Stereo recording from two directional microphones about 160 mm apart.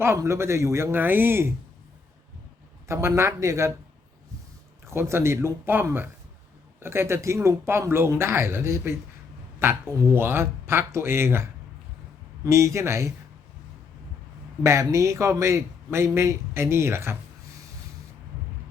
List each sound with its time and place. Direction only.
0.0 s speech: 15° right (ahead or behind)
2.8 s speech: 15° right (ahead or behind)
4.9 s speech: 15° right (ahead or behind)
12.5 s speech: 20° right (ahead or behind)
14.6 s speech: 20° right (ahead or behind)